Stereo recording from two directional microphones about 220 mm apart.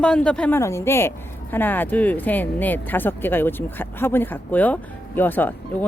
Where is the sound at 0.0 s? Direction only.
5° left (ahead or behind).